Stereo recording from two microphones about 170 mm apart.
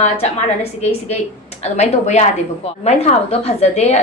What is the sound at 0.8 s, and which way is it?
Speech, 40° left (ahead or behind).